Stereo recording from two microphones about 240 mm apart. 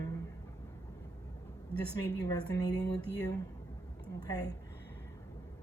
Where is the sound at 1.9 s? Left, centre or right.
Centre.